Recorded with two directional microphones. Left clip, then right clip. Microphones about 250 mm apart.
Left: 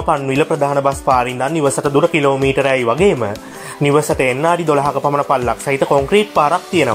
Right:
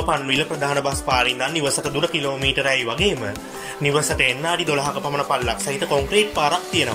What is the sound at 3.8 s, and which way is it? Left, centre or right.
Speech, centre.